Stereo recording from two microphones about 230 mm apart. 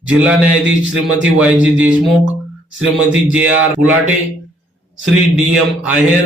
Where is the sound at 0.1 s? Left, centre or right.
Centre.